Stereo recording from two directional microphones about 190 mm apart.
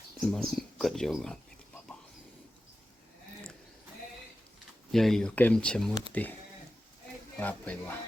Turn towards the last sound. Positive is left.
turn(degrees=10)  # may be behind; listen again after turning